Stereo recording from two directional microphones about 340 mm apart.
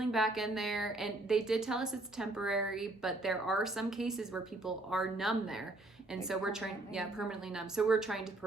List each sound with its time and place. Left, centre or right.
0.0 s a woman's voice: centre